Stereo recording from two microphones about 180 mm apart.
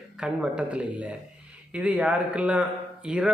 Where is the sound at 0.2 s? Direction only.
5° right (ahead or behind).